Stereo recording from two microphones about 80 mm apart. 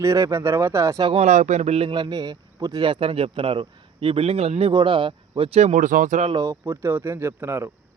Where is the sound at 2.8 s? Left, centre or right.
Right.